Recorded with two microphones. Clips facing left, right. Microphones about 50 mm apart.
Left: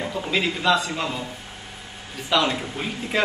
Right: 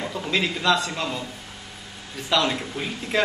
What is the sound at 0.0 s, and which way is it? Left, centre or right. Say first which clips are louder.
A man's voice: left 1 dB; centre.